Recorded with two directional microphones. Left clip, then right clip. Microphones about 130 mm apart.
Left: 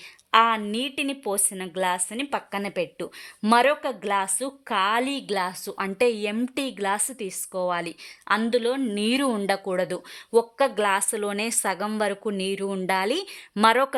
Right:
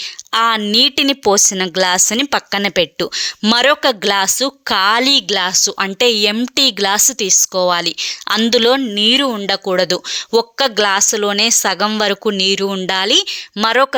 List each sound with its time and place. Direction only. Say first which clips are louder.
0.3 s a woman's voice: right 5 dB; 35° right (ahead or behind)
2.3 s a woman's voice: right 12 dB; 30° right (ahead or behind)
3.7 s a woman's voice: right 11 dB; 45° right (ahead or behind)
5.1 s a woman's voice: right 13 dB; 25° right (ahead or behind)
8.4 s speech: right 12 dB; 55° right (ahead or behind)
8.8 s speech: right 11 dB; 15° right (ahead or behind)
9.6 s a woman's voice: right 11 dB; 25° right (ahead or behind)